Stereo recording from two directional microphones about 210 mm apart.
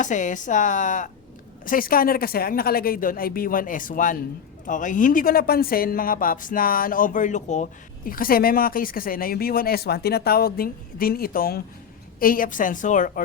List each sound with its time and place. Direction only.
0.0 s a woman's voice: 35° left (ahead or behind)